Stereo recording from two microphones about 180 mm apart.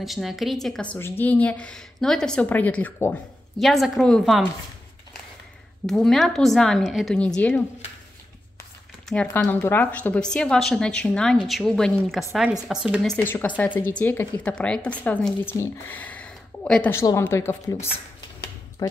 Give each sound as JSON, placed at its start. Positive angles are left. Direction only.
{"t": 0.0, "sound": "a woman's voice", "side_deg": 0}
{"t": 5.9, "sound": "a woman's voice", "side_deg": 5}
{"t": 9.1, "sound": "a woman's voice", "side_deg": 5}
{"t": 18.8, "sound": "a sound", "side_deg": 20}